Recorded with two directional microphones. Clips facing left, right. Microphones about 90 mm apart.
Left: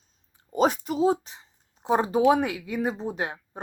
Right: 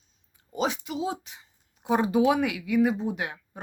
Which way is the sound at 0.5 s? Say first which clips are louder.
Left 5 dB; 40° left (ahead or behind).